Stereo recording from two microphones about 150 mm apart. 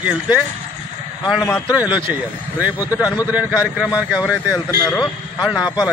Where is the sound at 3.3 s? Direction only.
5° right (ahead or behind).